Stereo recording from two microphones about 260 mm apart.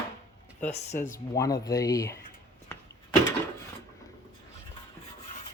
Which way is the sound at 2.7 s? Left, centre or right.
Centre.